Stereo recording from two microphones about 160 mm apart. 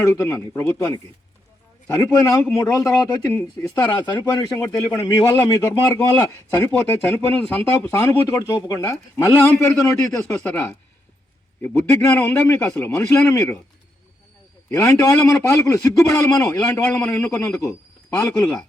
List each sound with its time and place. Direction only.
0.0 s a man's voice: 15° left (ahead or behind)
3.8 s a man's voice: 30° left (ahead or behind)
14.7 s a man's voice: 20° left (ahead or behind)
17.0 s a man's voice: 10° left (ahead or behind)